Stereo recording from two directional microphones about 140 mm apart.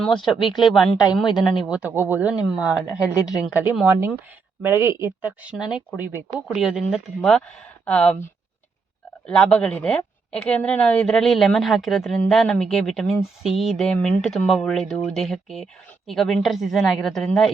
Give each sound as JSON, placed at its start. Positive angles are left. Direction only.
{"t": 0.2, "sound": "speech", "side_deg": 35}
{"t": 1.5, "sound": "speech", "side_deg": -5}
{"t": 2.9, "sound": "speech", "side_deg": 25}
{"t": 3.5, "sound": "speech", "side_deg": -10}
{"t": 9.2, "sound": "speech", "side_deg": 10}